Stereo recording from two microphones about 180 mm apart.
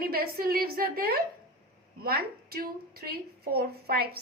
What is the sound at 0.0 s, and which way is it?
A woman's voice, 55° right (ahead or behind).